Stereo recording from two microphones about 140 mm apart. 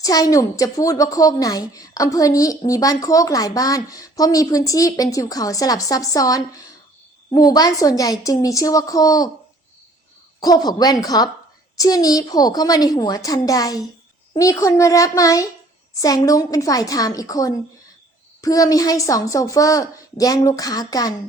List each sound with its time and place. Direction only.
0.0 s speech: 25° left (ahead or behind)
10.4 s speech: 30° left (ahead or behind)